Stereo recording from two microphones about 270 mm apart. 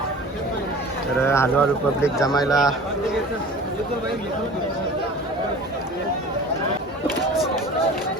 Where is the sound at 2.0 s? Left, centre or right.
Centre.